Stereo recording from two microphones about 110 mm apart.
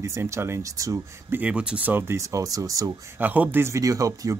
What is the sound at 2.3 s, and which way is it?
Speech, 30° right (ahead or behind).